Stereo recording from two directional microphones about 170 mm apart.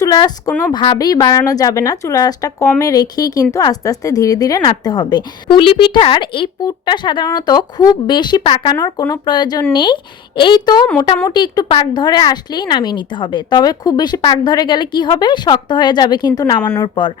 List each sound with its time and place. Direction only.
0.0 s a woman's voice: 25° left (ahead or behind)